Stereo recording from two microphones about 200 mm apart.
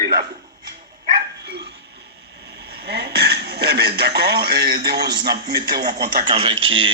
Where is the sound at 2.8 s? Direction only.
55° right (ahead or behind).